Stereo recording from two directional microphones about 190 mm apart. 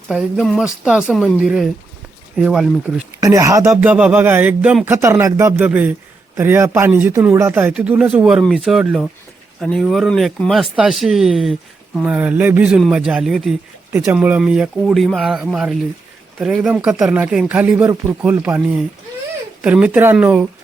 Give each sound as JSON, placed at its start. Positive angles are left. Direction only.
{"t": 0.1, "sound": "speech", "side_deg": -5}
{"t": 3.2, "sound": "speech", "side_deg": -15}